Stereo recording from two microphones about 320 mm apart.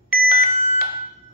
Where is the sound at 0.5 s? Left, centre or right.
Left.